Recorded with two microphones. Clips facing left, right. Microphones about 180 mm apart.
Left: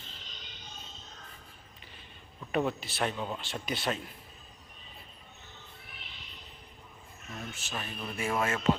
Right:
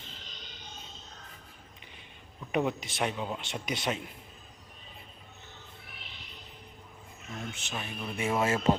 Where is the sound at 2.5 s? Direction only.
15° right (ahead or behind).